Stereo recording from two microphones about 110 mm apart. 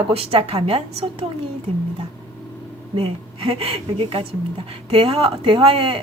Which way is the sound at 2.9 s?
55° right (ahead or behind).